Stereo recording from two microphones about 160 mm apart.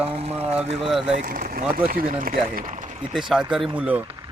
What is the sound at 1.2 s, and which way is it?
Speech, 65° right (ahead or behind).